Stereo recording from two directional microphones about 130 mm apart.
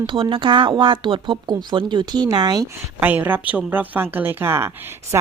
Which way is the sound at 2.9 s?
15° right (ahead or behind).